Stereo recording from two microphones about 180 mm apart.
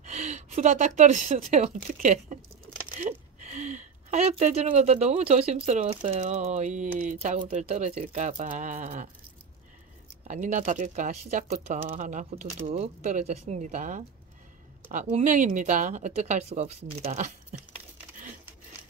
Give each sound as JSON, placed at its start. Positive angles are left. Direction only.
{"t": 0.0, "sound": "speech", "side_deg": -40}
{"t": 10.2, "sound": "speech", "side_deg": -45}